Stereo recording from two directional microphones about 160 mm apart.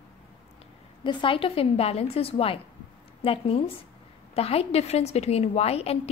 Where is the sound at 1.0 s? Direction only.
35° left (ahead or behind).